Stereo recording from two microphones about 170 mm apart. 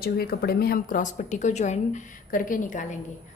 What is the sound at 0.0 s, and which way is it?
A woman's voice, 65° left (ahead or behind).